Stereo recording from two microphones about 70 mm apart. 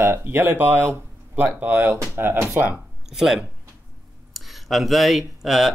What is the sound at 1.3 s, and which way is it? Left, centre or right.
Speech, centre.